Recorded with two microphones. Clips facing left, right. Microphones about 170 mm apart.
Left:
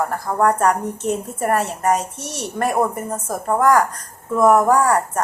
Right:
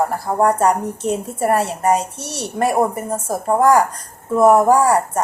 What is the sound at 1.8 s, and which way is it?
Speech, 30° right (ahead or behind).